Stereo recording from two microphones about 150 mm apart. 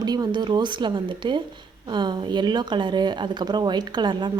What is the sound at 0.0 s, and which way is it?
A woman's voice, 25° right (ahead or behind).